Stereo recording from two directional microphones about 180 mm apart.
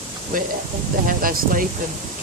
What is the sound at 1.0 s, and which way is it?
Speech, 50° right (ahead or behind).